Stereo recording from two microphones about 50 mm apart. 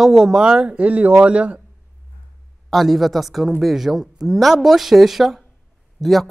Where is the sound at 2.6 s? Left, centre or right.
Centre.